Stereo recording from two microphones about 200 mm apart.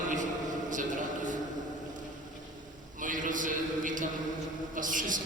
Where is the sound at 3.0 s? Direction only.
40° right (ahead or behind).